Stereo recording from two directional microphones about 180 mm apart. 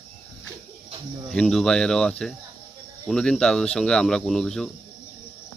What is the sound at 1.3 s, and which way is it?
Speech, 5° left (ahead or behind).